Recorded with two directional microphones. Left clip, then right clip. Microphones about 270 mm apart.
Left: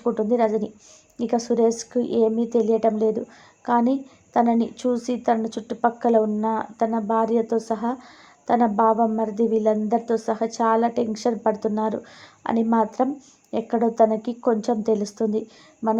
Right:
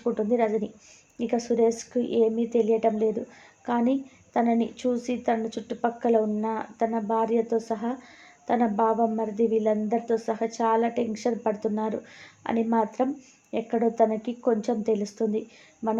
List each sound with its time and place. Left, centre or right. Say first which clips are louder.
0.0 s speech: left 4 dB; centre
4.4 s speech: left 4 dB; centre